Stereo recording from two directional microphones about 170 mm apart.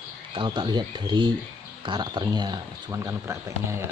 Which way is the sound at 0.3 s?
30° right (ahead or behind).